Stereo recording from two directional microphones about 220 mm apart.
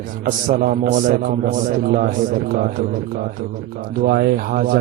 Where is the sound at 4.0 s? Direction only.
45° right (ahead or behind).